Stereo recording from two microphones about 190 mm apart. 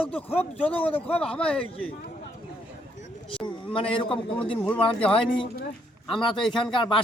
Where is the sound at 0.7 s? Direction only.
30° left (ahead or behind).